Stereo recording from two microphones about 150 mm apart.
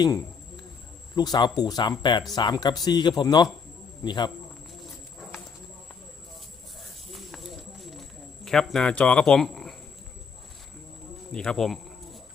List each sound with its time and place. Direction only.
0.0 s speech: 20° left (ahead or behind)
7.1 s clip-clop: centre (ahead or behind)
8.4 s speech: 5° left (ahead or behind)
11.3 s a sound: 5° left (ahead or behind)